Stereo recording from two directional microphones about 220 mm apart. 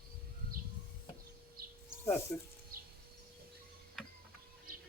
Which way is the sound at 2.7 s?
40° right (ahead or behind).